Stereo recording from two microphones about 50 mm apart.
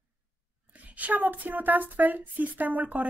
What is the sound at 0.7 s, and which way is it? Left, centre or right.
Speech, right.